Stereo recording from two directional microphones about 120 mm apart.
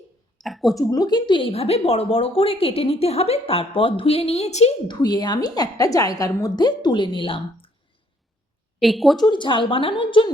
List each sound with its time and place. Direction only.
0.4 s a sound: centre (ahead or behind)
0.8 s a woman's voice: 30° left (ahead or behind); by 4.7 s 65° left (ahead or behind)
4.9 s a woman's voice: 35° left (ahead or behind)
8.8 s speech: centre (ahead or behind)
9.2 s speech: 40° left (ahead or behind)